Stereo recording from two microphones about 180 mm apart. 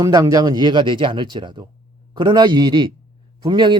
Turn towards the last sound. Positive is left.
turn(degrees=-25)  # may be behind; listen again after turning